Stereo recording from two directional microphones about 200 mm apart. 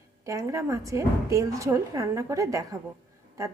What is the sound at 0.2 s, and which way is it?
Speech, 15° right (ahead or behind).